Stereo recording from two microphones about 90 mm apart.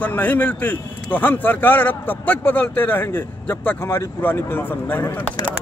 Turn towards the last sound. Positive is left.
turn(degrees=25)  # may be behind; listen again after turning